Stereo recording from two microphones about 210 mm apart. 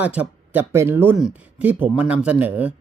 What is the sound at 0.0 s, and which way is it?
Speech, 5° right (ahead or behind).